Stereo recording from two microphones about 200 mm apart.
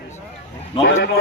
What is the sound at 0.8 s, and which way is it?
Speech, 65° left (ahead or behind).